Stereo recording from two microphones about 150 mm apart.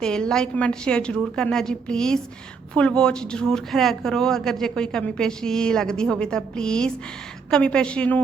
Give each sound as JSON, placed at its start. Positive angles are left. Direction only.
{"t": 0.0, "sound": "a woman's voice", "side_deg": 5}